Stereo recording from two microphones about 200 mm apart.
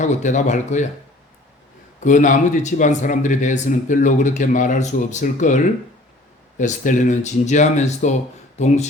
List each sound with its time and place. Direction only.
0.0 s speech: 35° left (ahead or behind)
2.0 s speech: 40° left (ahead or behind)